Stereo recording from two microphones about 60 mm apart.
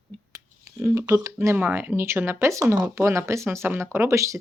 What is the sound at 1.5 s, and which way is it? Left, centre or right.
Speech, right.